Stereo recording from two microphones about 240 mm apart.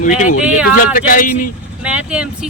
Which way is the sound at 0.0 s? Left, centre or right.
Left.